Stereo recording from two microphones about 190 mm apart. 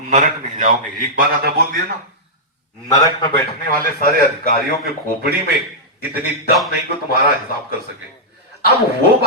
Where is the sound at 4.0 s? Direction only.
50° left (ahead or behind).